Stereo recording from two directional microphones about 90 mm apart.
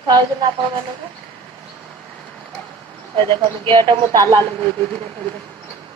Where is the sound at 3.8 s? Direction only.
55° right (ahead or behind).